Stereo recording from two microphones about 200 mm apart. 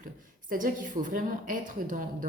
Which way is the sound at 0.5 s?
40° right (ahead or behind).